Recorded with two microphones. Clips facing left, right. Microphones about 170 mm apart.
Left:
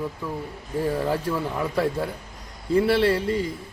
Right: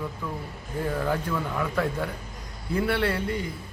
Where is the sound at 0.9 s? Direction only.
30° left (ahead or behind).